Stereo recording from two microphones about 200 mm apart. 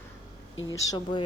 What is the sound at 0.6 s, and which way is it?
Speech, 20° left (ahead or behind).